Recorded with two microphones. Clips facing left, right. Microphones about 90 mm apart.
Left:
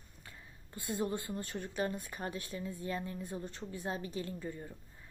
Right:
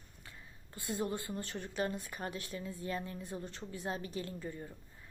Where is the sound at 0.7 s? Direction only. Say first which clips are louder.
Left 1 dB; 30° left (ahead or behind).